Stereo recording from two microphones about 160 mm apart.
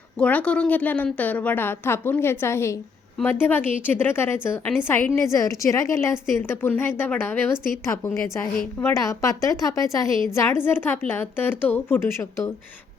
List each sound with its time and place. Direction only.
0.2 s a woman's voice: 10° left (ahead or behind)